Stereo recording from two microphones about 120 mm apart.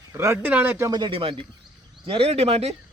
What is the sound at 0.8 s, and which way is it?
Speech, 35° right (ahead or behind).